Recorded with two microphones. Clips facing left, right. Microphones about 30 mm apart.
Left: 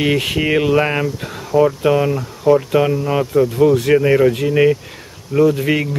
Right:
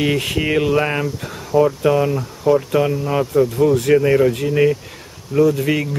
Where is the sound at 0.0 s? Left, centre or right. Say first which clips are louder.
Left 2 dB; centre.